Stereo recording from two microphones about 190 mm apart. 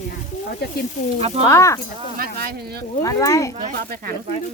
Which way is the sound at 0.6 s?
60° left (ahead or behind).